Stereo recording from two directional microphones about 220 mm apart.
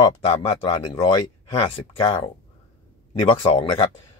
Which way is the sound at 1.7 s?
25° left (ahead or behind).